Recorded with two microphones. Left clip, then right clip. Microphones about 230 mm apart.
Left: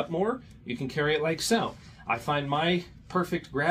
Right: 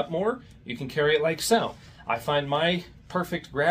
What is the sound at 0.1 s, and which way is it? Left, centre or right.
Speech, centre.